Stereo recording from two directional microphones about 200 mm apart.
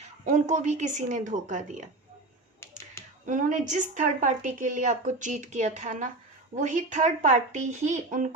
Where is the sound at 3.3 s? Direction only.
40° right (ahead or behind).